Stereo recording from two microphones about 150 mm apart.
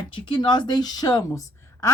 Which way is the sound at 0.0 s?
35° left (ahead or behind).